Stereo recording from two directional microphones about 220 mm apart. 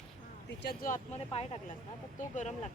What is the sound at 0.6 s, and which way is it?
Speech, 45° left (ahead or behind).